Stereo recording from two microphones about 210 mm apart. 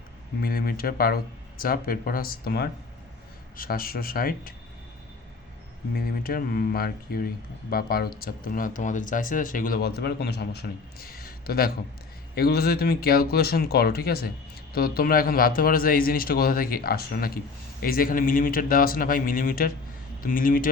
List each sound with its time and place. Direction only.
0.4 s speech: 45° left (ahead or behind)
5.9 s speech: 45° left (ahead or behind)